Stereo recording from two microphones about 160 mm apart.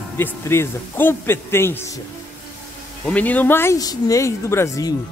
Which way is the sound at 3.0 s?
10° left (ahead or behind).